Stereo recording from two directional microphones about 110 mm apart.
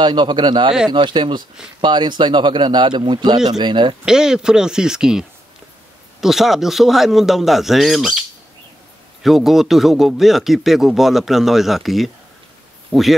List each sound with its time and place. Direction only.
0.0 s speech: 45° right (ahead or behind)
4.0 s speech: 5° right (ahead or behind)
6.2 s speech: centre (ahead or behind)